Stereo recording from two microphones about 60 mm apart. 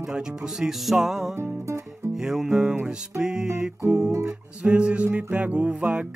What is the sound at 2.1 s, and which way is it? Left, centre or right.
Music, centre.